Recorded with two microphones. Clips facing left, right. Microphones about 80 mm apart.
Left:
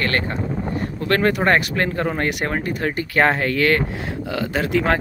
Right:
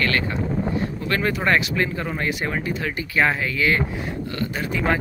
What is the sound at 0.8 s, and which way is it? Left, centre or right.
Speech, left.